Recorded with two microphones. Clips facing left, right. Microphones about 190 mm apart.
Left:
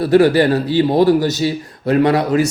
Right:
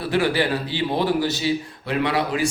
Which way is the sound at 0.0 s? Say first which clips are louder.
Left 10 dB; 40° left (ahead or behind).